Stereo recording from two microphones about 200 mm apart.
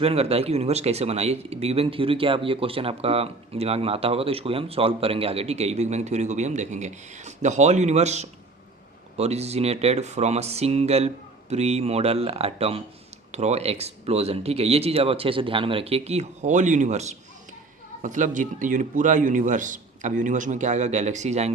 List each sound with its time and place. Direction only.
0.0 s speech: 30° right (ahead or behind)